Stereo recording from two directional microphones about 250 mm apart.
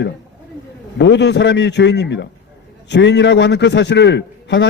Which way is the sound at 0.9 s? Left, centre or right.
Left.